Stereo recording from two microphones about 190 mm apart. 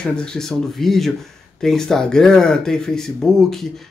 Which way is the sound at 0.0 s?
5° left (ahead or behind).